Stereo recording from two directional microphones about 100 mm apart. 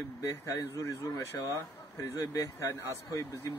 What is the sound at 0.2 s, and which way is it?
Speech, 35° left (ahead or behind).